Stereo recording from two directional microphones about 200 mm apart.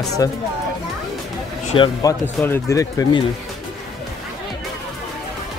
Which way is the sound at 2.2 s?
10° left (ahead or behind).